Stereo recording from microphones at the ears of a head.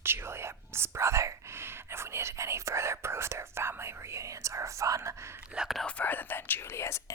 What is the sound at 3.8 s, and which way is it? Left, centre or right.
Speech, right.